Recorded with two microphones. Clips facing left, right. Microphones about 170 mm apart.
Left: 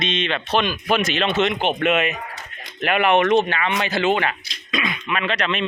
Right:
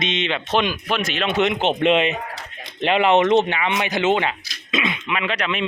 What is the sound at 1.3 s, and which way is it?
Speech, 15° right (ahead or behind).